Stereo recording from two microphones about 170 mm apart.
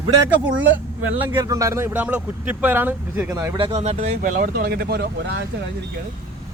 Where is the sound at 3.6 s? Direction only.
35° right (ahead or behind); by 5.4 s 75° right (ahead or behind).